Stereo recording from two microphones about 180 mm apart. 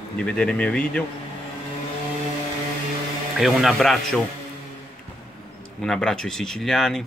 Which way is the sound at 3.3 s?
Centre (ahead or behind).